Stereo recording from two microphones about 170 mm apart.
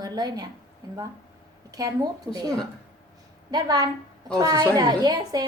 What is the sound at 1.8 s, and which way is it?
Speech, 20° right (ahead or behind).